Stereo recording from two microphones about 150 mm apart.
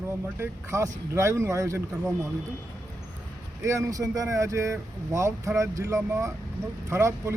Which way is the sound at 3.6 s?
20° right (ahead or behind).